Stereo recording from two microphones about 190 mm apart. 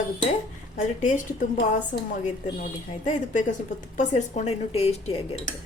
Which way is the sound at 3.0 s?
40° left (ahead or behind).